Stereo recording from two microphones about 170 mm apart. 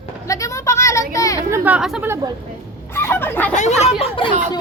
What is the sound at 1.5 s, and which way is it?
Speech, 10° right (ahead or behind).